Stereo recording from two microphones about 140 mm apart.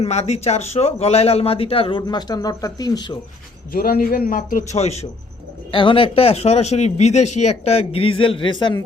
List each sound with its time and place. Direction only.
0.0 s a man's voice: 50° left (ahead or behind); by 3.2 s 30° left (ahead or behind)
3.7 s a man's voice: 90° left; by 5.0 s 50° left (ahead or behind)
5.7 s a man's voice: 40° left (ahead or behind)